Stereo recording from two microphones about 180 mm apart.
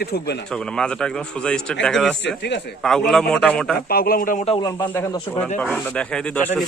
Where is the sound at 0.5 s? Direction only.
5° left (ahead or behind).